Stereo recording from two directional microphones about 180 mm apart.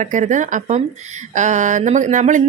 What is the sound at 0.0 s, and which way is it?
Speech, 45° right (ahead or behind).